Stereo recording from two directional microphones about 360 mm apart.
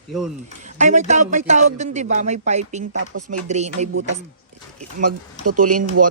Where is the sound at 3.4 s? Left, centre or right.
Centre.